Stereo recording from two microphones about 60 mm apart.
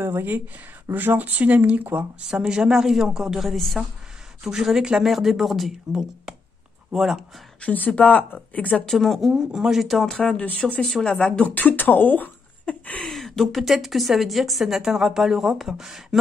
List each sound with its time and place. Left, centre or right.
0.0 s speech: right
2.2 s a woman's voice: centre
7.6 s speech: left
8.8 s a woman's voice: centre
9.3 s a woman's voice: centre
10.0 s a woman's voice: centre
11.1 s speech: centre
11.5 s speech: left
12.6 s a sound: left
13.0 s a woman's voice: centre